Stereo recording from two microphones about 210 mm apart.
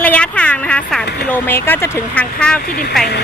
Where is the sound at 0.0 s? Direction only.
5° left (ahead or behind).